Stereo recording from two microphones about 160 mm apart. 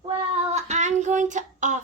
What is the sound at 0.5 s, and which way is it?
Child singing, 45° right (ahead or behind).